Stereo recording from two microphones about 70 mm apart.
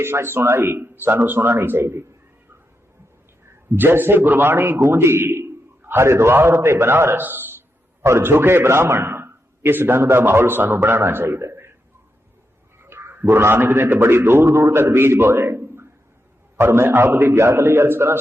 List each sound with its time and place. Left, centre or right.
0.0 s a man's voice: right
3.8 s a man's voice: right
12.8 s a man's voice: right